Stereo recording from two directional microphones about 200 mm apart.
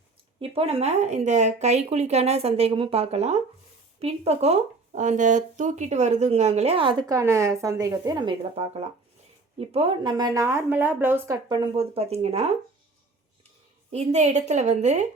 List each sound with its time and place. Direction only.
0.3 s speech: 30° right (ahead or behind)
7.1 s a woman's voice: 15° right (ahead or behind); by 12.5 s 30° right (ahead or behind)
13.9 s speech: 35° right (ahead or behind)